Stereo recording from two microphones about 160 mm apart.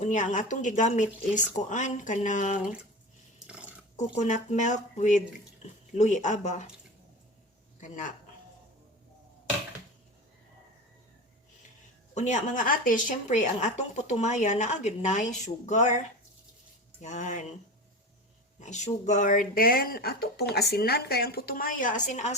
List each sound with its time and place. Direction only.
0.0 s speech: 50° left (ahead or behind)
3.4 s a sound: 5° right (ahead or behind)
3.9 s speech: 50° left (ahead or behind)
12.1 s speech: 50° left (ahead or behind)
17.0 s speech: 50° left (ahead or behind)
18.6 s speech: 50° left (ahead or behind)